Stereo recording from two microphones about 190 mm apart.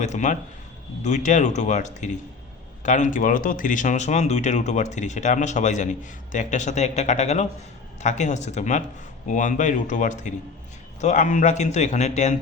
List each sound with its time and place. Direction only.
0.0 s speech: 40° left (ahead or behind)